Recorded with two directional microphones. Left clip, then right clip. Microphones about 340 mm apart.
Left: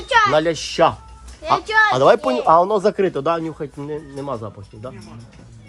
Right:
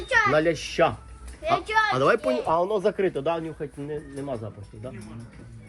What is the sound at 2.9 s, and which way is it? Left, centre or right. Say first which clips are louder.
Speech: left 6 dB; left.